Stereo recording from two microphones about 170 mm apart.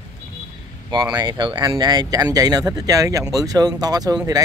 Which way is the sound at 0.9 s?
25° right (ahead or behind).